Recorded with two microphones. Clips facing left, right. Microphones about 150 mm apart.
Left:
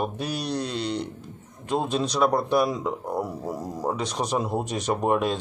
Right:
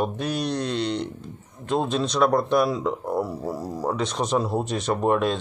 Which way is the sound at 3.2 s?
20° left (ahead or behind).